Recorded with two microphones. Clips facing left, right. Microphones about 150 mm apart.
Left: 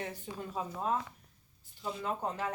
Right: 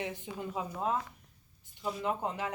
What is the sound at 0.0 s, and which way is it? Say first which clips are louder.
Speech: right 2 dB; 15° right (ahead or behind).